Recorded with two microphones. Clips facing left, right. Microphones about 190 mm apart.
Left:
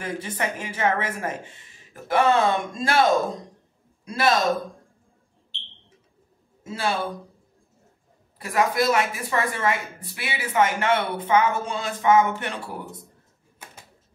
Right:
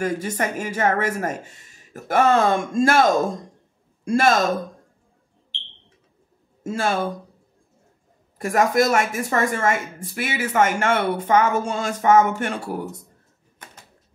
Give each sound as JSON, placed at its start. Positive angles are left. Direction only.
{"t": 0.0, "sound": "a woman's voice", "side_deg": -45}
{"t": 6.6, "sound": "speech", "side_deg": -45}
{"t": 8.4, "sound": "a woman's voice", "side_deg": -45}